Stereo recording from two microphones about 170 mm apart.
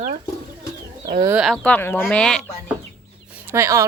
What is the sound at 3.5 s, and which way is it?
Speech, 15° right (ahead or behind).